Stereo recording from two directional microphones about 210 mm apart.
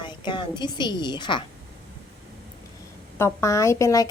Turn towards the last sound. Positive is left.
turn(degrees=15)  # may be behind; listen again after turning